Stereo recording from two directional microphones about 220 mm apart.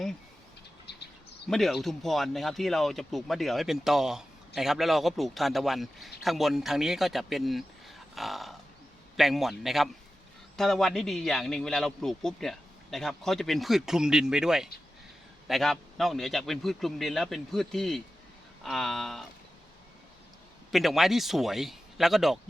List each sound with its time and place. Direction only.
0.9 s bird: 50° left (ahead or behind)
1.5 s speech: centre (ahead or behind)
20.7 s speech: centre (ahead or behind)